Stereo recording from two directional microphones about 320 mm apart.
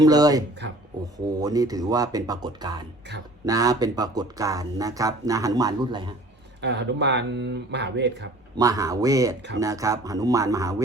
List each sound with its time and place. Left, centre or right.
0.0 s speech: centre
6.6 s speech: right
8.5 s speech: centre